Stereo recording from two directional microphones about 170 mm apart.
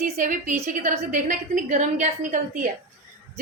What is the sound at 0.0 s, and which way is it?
A woman's voice, 50° right (ahead or behind).